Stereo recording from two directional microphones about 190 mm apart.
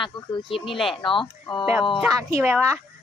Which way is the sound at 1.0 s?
25° left (ahead or behind).